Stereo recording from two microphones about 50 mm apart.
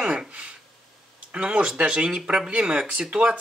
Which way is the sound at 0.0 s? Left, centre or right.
Centre.